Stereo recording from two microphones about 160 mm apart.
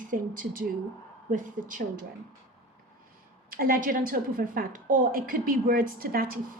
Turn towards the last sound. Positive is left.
turn(degrees=-65)  # may be behind; listen again after turning